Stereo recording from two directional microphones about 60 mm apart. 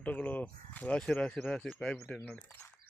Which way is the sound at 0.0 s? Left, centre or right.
Left.